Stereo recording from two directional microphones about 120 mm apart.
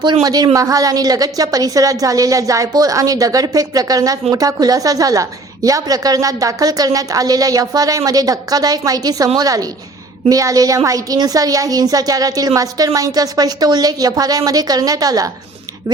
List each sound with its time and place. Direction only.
0.0 s a woman's voice: 35° right (ahead or behind)